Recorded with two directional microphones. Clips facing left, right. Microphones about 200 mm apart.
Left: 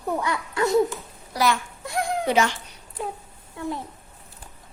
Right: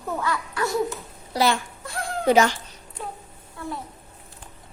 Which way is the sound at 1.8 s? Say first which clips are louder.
Left 5 dB; 20° left (ahead or behind).